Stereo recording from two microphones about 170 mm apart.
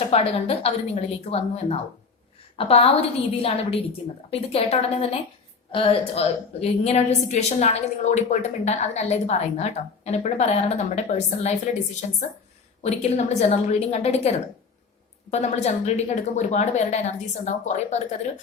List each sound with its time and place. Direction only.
0.1 s a woman's voice: 35° left (ahead or behind)